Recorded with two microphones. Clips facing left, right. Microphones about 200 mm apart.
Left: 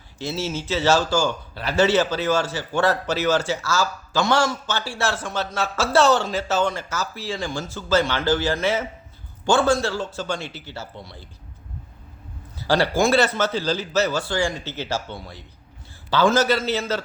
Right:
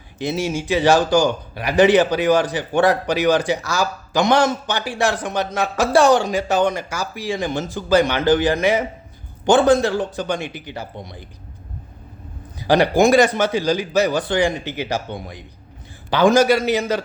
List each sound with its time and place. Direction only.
0.2 s speech: 15° right (ahead or behind)
12.5 s speech: 15° right (ahead or behind)